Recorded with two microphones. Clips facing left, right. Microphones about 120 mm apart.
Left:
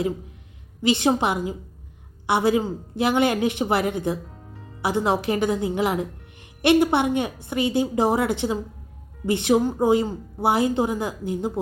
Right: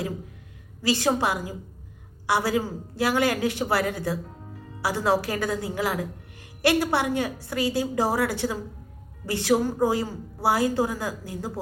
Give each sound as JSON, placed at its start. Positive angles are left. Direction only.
{"t": 0.8, "sound": "a woman's voice", "side_deg": 20}